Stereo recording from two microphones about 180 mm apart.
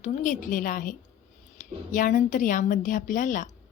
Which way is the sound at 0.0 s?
45° left (ahead or behind).